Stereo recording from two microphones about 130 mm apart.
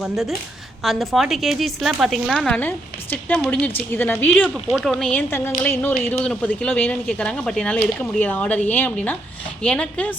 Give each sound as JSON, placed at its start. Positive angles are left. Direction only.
{"t": 0.0, "sound": "a woman's voice", "side_deg": 0}
{"t": 2.5, "sound": "a woman's voice", "side_deg": 15}
{"t": 4.4, "sound": "speech", "side_deg": -5}
{"t": 4.9, "sound": "speech", "side_deg": 5}